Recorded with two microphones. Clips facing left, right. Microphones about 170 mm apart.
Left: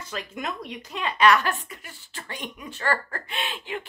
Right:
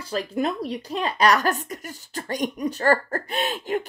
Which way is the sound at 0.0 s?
35° right (ahead or behind).